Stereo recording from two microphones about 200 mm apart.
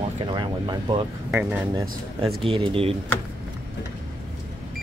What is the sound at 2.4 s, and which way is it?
Speech, 25° right (ahead or behind).